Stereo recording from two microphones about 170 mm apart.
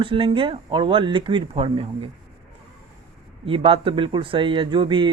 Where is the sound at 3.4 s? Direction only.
30° right (ahead or behind).